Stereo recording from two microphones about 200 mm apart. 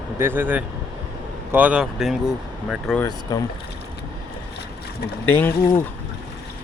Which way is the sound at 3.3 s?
20° left (ahead or behind).